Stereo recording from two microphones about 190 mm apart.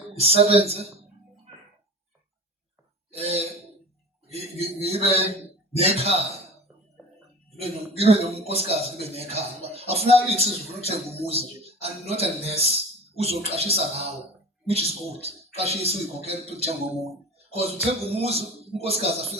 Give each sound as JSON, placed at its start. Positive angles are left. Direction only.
{"t": 0.1, "sound": "speech", "side_deg": -30}
{"t": 3.1, "sound": "throat clearing", "side_deg": -30}
{"t": 4.3, "sound": "a man's voice", "side_deg": -30}
{"t": 7.6, "sound": "speech", "side_deg": -30}
{"t": 18.1, "sound": "speech", "side_deg": -30}